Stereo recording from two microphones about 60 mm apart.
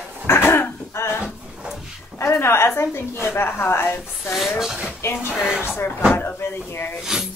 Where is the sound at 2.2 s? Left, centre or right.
Left.